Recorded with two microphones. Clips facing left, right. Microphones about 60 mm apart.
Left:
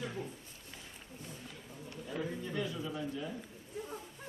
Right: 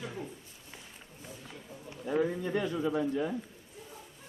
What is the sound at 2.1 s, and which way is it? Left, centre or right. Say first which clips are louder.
A man's voice: right 8 dB; right.